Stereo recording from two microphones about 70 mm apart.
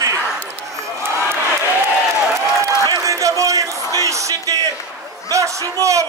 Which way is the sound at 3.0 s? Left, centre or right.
Right.